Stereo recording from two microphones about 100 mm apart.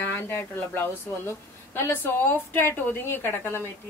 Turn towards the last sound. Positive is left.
turn(degrees=25)  # may be behind; listen again after turning